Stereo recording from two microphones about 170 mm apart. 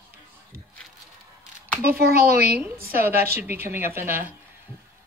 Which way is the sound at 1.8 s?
65° right (ahead or behind).